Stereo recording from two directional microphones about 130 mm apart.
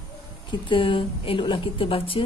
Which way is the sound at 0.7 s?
40° left (ahead or behind).